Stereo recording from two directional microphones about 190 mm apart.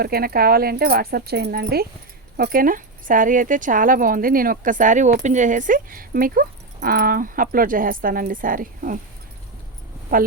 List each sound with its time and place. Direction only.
0.0 s speech: 55° right (ahead or behind)